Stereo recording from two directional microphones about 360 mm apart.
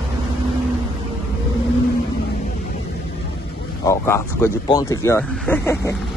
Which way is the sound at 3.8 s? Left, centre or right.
Centre.